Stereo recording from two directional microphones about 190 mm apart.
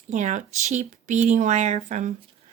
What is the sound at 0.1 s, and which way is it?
A woman's voice, 40° right (ahead or behind).